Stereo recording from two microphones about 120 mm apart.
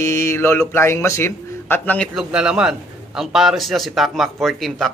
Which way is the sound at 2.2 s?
5° right (ahead or behind).